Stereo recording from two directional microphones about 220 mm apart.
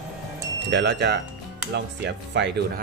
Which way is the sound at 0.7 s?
50° right (ahead or behind).